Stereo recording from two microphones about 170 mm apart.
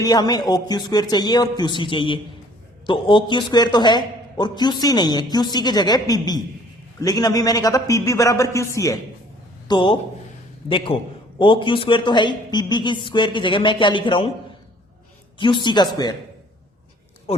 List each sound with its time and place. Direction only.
0.0 s a man's voice: 20° left (ahead or behind)
9.6 s a man's voice: 30° left (ahead or behind)
15.4 s a man's voice: 30° left (ahead or behind)